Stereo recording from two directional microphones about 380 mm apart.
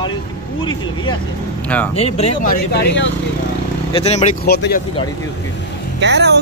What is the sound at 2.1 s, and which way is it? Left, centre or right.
Speech, centre.